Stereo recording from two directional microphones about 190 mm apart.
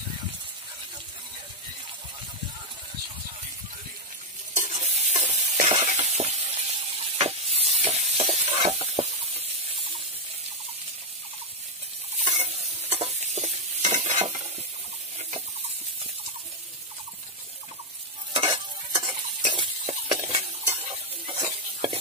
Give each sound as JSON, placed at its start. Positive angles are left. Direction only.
{"t": 4.6, "sound": "stir", "side_deg": -35}
{"t": 12.9, "sound": "stir", "side_deg": -35}
{"t": 18.9, "sound": "stir", "side_deg": -30}